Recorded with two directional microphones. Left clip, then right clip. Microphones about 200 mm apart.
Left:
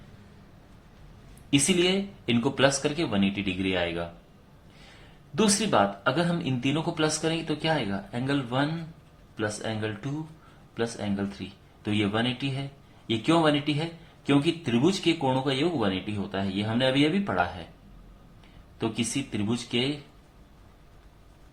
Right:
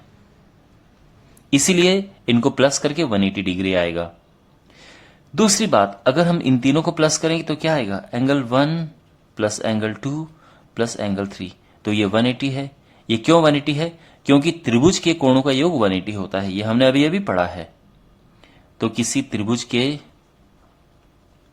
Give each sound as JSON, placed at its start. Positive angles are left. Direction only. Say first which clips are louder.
{"t": 1.5, "sound": "a man's voice", "louder": "right 8 dB", "side_deg": -45}
{"t": 5.3, "sound": "a man's voice", "louder": "right 7 dB", "side_deg": -45}
{"t": 18.8, "sound": "a man's voice", "louder": "right 8 dB", "side_deg": -45}